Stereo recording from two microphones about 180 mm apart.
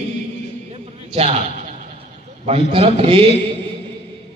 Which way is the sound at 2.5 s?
30° right (ahead or behind).